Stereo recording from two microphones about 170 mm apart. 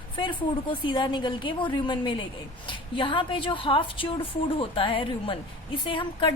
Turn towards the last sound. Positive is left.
turn(degrees=30)  # may be behind; listen again after turning